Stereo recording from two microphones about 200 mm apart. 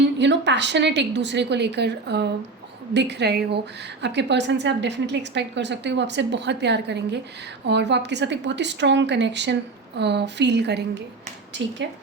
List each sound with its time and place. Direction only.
0.0 s a woman's voice: 60° right (ahead or behind)